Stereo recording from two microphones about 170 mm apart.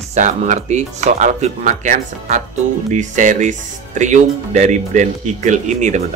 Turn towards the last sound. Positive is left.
turn(degrees=-45)  # may be behind; listen again after turning